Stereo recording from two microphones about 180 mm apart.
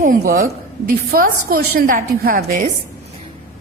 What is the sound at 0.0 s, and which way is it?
A woman's voice, 50° right (ahead or behind).